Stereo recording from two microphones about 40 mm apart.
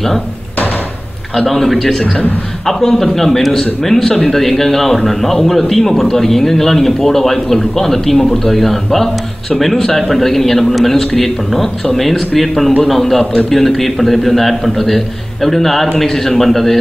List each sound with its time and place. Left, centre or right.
1.3 s a man's voice: centre